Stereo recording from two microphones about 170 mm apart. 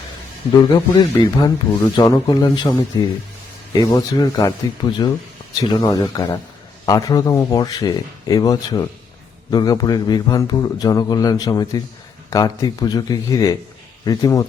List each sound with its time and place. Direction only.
0.5 s a man's voice: 25° left (ahead or behind)